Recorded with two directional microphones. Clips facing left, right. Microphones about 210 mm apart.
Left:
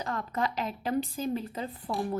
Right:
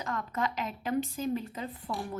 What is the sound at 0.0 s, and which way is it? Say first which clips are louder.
A woman's voice: left 2 dB; 35° left (ahead or behind).